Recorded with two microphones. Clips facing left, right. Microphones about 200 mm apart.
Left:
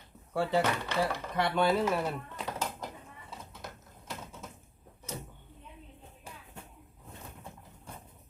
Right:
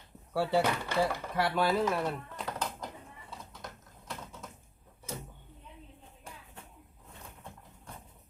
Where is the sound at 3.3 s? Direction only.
Centre (ahead or behind).